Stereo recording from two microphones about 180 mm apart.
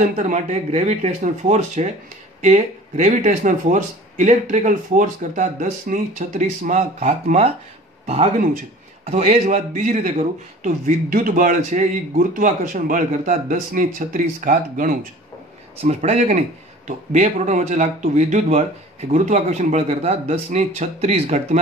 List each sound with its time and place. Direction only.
0.2 s a man's voice: 40° right (ahead or behind)